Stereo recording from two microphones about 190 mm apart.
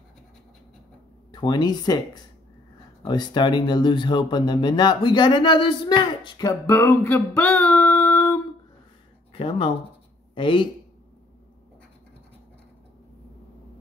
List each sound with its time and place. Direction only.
1.3 s speech: 25° left (ahead or behind)
9.3 s speech: 30° left (ahead or behind)